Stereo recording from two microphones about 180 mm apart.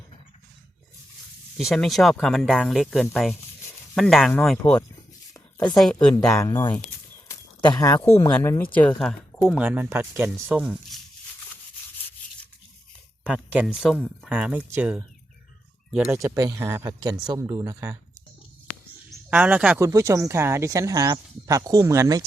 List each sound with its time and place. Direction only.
1.5 s speech: centre (ahead or behind)
5.3 s a sound: 20° left (ahead or behind)
5.7 s speech: 5° left (ahead or behind)
6.4 s speech: 15° left (ahead or behind)
7.3 s a sound: 20° left (ahead or behind)
8.3 s speech: 10° left (ahead or behind)
9.6 s speech: 10° right (ahead or behind)
13.2 s speech: 5° right (ahead or behind)
16.2 s speech: 20° right (ahead or behind)
19.3 s speech: 10° right (ahead or behind)